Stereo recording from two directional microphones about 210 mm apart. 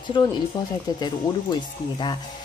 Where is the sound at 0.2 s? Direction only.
20° left (ahead or behind).